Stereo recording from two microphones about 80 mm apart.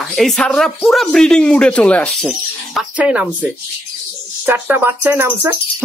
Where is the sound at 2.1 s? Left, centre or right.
Centre.